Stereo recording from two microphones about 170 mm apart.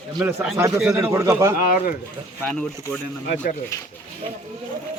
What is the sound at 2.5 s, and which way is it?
Speech, 5° left (ahead or behind).